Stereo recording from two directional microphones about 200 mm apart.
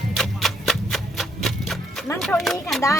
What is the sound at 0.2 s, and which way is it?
Music, centre (ahead or behind).